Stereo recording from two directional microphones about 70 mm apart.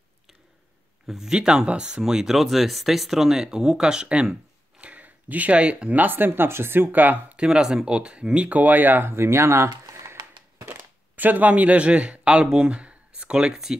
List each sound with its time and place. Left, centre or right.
1.0 s speech: centre; by 7.3 s right
7.3 s speech: centre; by 10.2 s right
10.7 s speech: right; by 13.7 s centre